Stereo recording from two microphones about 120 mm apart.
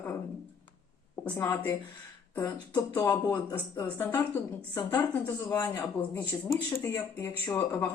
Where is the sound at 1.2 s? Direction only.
15° left (ahead or behind).